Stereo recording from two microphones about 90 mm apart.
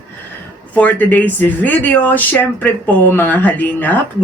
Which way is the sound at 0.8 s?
20° left (ahead or behind).